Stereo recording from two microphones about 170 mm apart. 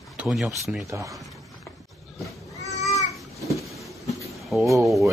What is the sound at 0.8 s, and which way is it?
Speech, 20° right (ahead or behind).